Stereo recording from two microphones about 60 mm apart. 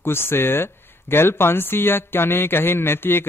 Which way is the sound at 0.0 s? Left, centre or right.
Left.